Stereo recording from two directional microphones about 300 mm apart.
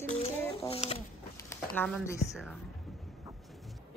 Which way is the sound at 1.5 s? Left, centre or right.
Centre.